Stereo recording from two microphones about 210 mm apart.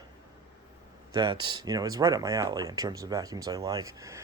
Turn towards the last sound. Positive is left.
turn(degrees=-15)  # may be behind; listen again after turning